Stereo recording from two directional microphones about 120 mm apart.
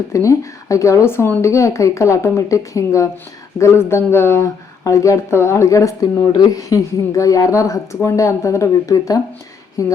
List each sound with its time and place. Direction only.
0.1 s speech: 25° left (ahead or behind)